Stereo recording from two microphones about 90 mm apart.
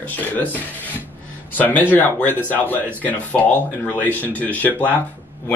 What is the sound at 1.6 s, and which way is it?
Speech, 20° left (ahead or behind).